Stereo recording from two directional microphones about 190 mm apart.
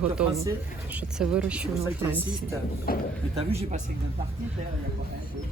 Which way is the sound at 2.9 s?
50° left (ahead or behind).